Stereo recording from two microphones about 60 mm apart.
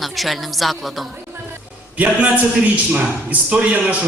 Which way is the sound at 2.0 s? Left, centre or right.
Right.